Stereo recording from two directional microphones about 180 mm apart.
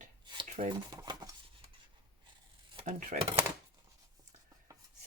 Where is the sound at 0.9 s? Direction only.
20° right (ahead or behind).